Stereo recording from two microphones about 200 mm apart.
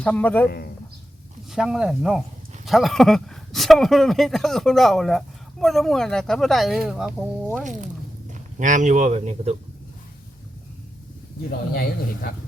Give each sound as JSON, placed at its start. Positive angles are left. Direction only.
{"t": 0.0, "sound": "speech", "side_deg": 5}
{"t": 1.5, "sound": "speech", "side_deg": 0}
{"t": 8.3, "sound": "speech", "side_deg": -40}